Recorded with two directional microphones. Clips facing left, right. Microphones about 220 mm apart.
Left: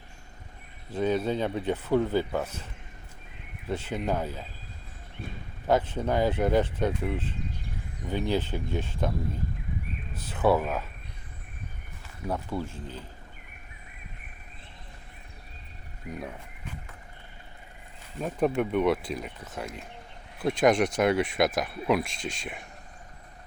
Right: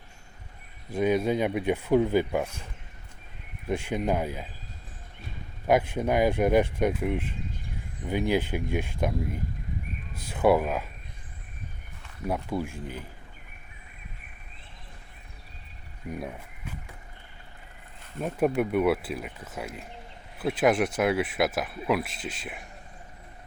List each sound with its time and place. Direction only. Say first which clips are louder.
0.9 s speech: right 2 dB; 10° right (ahead or behind)
3.7 s speech: right 2 dB; 15° right (ahead or behind)
5.6 s speech: right 2 dB; 10° right (ahead or behind)
12.3 s speech: right 2 dB; 10° right (ahead or behind)
18.2 s speech: right 1 dB; 10° right (ahead or behind)